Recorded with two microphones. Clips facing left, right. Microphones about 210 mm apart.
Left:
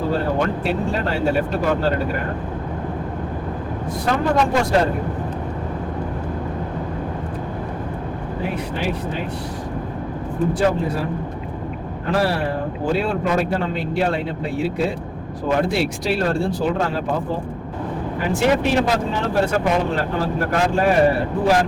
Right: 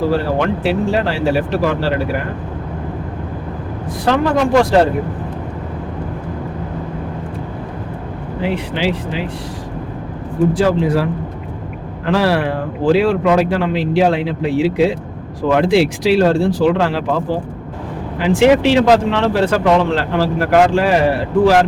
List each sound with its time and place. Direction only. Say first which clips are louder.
0.1 s speech: right 4 dB; 90° right
4.0 s speech: right 4 dB; 80° right
8.4 s speech: right 7 dB; 90° right
10.5 s speech: right 4 dB; 90° right